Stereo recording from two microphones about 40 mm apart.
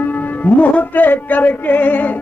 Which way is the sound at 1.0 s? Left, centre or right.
Left.